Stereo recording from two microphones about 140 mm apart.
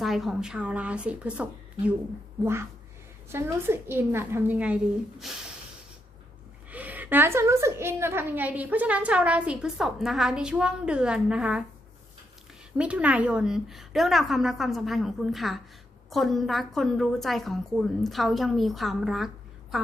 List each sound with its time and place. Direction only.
0.0 s a woman's voice: centre (ahead or behind)
6.7 s a woman's voice: 10° right (ahead or behind)
12.7 s a woman's voice: 10° right (ahead or behind)